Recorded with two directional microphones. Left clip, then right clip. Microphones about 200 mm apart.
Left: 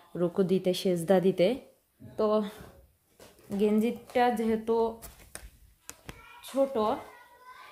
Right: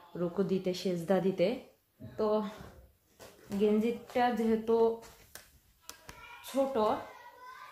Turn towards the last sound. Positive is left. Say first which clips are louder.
# left 2 dB
turn(degrees=35)  # may be behind; listen again after turning